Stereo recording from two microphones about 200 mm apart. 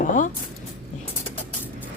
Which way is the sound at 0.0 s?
40° left (ahead or behind).